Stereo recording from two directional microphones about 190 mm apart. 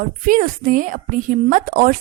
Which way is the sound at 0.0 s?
45° right (ahead or behind).